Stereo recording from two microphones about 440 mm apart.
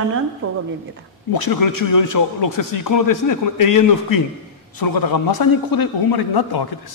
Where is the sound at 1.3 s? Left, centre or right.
Left.